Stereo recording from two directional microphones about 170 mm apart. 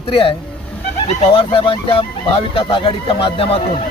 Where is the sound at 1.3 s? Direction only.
30° left (ahead or behind).